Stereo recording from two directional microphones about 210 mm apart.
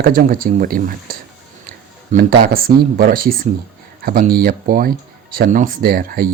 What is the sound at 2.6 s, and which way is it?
Speech, 45° right (ahead or behind).